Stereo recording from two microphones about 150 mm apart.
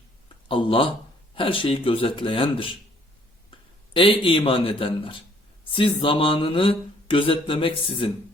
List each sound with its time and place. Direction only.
0.4 s speech: 35° left (ahead or behind)